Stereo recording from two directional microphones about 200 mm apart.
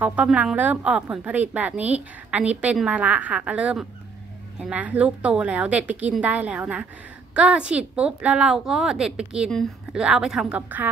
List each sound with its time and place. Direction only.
0.0 s a woman's voice: 5° right (ahead or behind)